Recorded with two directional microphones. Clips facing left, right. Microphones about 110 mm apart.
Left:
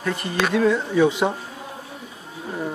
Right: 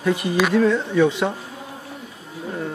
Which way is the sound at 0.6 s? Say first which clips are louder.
Left 1 dB; 10° left (ahead or behind).